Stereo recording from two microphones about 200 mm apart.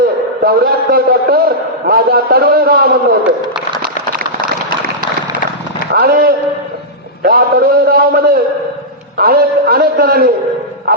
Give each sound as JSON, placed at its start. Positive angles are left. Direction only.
{"t": 0.4, "sound": "a man's voice", "side_deg": -50}
{"t": 5.9, "sound": "a man's voice", "side_deg": -50}